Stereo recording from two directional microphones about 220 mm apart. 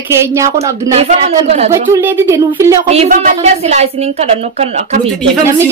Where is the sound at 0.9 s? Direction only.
30° right (ahead or behind).